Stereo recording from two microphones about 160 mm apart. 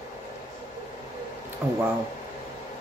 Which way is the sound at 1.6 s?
15° right (ahead or behind).